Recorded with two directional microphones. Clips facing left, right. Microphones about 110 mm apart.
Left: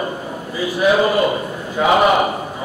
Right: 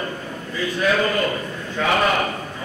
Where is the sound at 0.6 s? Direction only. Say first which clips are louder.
Left 5 dB; 20° left (ahead or behind).